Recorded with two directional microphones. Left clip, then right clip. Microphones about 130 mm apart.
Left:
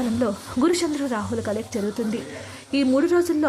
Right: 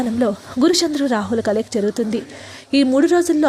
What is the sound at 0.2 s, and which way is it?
A woman's voice, 30° right (ahead or behind).